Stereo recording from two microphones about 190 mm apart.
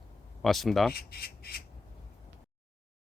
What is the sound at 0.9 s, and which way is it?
Speech, 55° left (ahead or behind).